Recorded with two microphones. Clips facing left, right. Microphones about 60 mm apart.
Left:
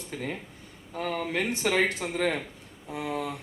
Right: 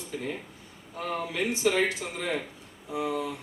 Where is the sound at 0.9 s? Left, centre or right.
Left.